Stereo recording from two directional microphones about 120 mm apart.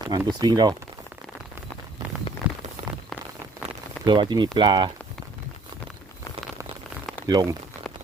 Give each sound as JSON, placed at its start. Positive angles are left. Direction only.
{"t": 0.1, "sound": "speech", "side_deg": -35}
{"t": 2.4, "sound": "a sound", "side_deg": -10}
{"t": 4.0, "sound": "speech", "side_deg": -40}
{"t": 7.3, "sound": "speech", "side_deg": -35}